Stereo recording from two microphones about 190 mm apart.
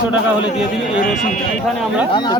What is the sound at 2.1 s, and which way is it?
Speech, 20° left (ahead or behind).